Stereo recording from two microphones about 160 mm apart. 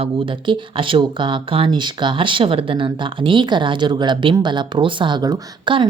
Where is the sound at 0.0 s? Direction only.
30° right (ahead or behind).